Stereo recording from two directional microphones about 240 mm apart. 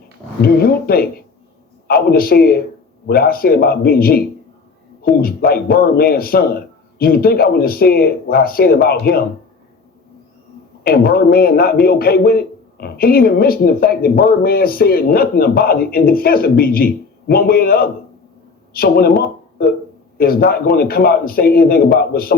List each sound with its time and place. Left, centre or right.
0.4 s a man's voice: left
10.8 s a man's voice: left